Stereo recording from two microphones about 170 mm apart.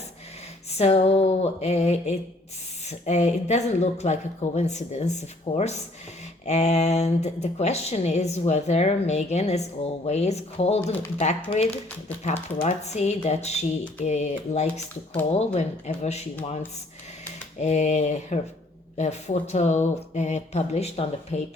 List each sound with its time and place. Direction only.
0.8 s speech: 40° left (ahead or behind)
17.6 s speech: 45° left (ahead or behind)